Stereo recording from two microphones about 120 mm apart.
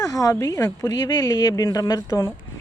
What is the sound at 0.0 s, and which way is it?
Speech, 30° left (ahead or behind).